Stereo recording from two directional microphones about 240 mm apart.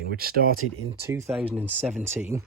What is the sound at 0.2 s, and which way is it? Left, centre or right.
Speech, right.